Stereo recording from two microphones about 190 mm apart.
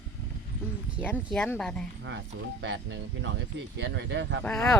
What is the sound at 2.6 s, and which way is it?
Speech, 70° right (ahead or behind).